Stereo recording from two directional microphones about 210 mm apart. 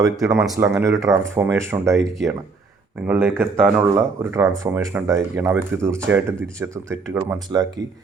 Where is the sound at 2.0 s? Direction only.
Centre (ahead or behind).